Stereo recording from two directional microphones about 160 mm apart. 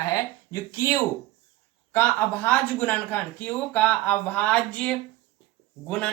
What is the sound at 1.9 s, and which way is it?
A man's voice, 10° left (ahead or behind).